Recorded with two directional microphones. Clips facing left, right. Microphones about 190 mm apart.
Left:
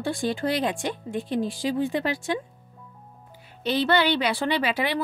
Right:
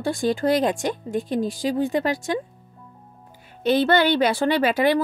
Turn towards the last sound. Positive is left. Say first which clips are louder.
# right 6 dB
turn(degrees=-45)  # may be behind; listen again after turning